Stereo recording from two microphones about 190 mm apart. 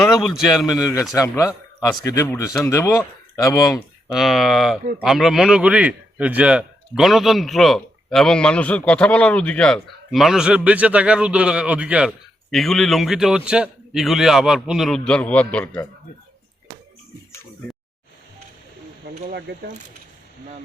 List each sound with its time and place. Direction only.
0.0 s a man's voice: centre (ahead or behind)
0.9 s speech: 15° left (ahead or behind)
4.1 s a man's voice: centre (ahead or behind)
19.2 s speech: 55° right (ahead or behind)